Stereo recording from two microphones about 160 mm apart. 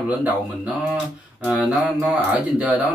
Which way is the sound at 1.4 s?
5° right (ahead or behind).